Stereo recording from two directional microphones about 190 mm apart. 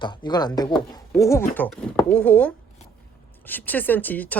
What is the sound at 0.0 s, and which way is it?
Speech, 25° left (ahead or behind).